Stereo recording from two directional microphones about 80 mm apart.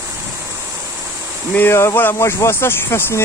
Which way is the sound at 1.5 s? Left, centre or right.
Left.